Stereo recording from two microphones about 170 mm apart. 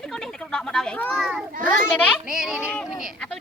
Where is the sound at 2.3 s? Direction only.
5° right (ahead or behind).